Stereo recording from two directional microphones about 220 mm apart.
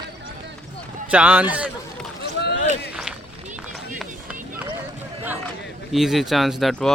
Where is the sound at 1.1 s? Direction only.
5° right (ahead or behind).